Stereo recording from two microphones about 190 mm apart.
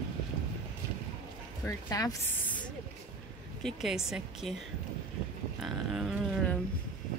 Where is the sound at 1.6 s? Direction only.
15° left (ahead or behind).